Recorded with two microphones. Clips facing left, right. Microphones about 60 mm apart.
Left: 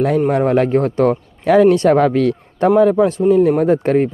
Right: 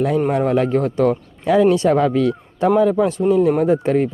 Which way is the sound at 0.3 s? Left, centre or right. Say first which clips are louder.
Left 3 dB; left.